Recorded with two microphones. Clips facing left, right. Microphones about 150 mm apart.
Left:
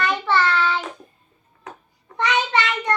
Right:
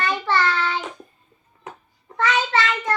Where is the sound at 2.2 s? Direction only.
20° left (ahead or behind).